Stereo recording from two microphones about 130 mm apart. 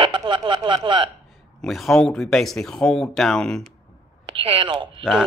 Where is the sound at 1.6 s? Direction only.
Centre (ahead or behind).